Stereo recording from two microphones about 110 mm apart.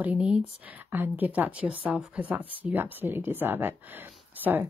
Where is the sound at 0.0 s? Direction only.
10° right (ahead or behind).